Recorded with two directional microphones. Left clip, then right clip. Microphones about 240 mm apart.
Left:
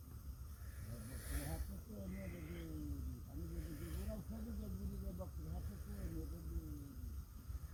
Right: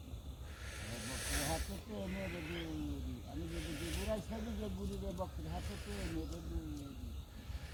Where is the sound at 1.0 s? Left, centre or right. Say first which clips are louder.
Right 12 dB; centre.